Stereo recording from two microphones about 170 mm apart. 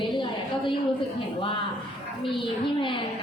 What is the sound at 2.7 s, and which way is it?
Speech, 30° left (ahead or behind).